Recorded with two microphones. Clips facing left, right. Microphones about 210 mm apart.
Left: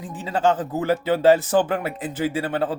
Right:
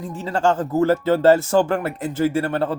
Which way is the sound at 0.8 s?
15° left (ahead or behind).